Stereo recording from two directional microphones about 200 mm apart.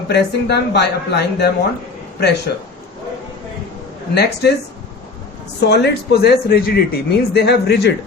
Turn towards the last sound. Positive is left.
turn(degrees=55)  # may be behind; listen again after turning